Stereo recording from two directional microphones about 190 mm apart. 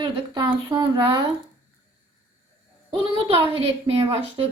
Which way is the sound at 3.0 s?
30° right (ahead or behind).